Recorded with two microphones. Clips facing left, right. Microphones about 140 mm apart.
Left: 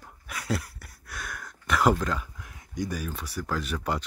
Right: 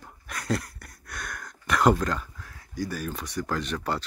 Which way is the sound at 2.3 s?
15° left (ahead or behind).